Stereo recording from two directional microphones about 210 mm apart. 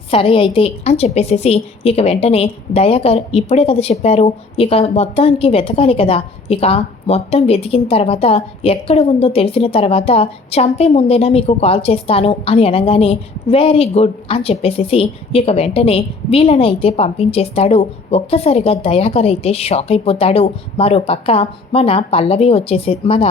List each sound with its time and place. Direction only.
0.1 s a woman's voice: 25° left (ahead or behind)